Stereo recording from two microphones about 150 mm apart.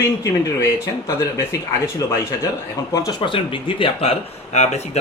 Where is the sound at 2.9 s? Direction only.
25° left (ahead or behind).